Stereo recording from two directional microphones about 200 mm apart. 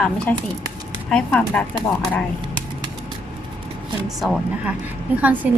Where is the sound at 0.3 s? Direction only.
5° left (ahead or behind).